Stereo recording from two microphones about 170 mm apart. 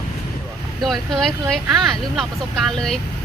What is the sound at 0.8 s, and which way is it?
Speech, centre (ahead or behind).